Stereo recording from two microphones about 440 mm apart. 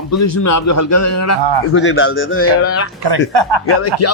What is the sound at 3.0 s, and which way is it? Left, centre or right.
Speech, right.